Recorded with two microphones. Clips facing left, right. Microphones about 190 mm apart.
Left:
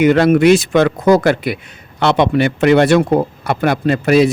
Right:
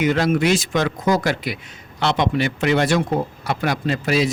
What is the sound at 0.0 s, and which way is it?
Speech, 60° left (ahead or behind).